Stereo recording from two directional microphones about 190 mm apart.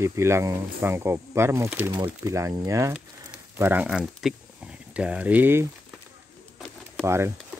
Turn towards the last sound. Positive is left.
turn(degrees=-15)  # may be behind; listen again after turning